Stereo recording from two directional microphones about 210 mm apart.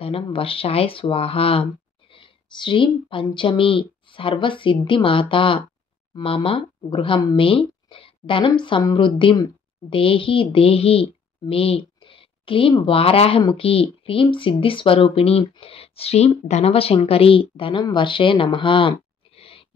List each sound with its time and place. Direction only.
0.0 s speech: 25° left (ahead or behind)